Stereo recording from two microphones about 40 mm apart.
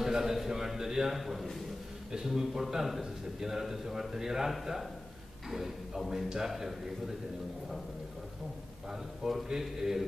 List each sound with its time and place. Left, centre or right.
0.0 s a man's voice: centre
9.2 s a man's voice: centre